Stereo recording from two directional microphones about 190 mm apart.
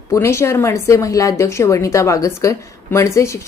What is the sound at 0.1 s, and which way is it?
A woman's voice, 15° left (ahead or behind).